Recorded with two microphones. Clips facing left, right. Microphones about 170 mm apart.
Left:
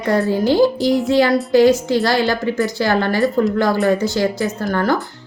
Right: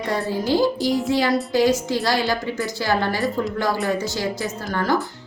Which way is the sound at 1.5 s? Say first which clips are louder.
Left 9 dB; 65° left (ahead or behind).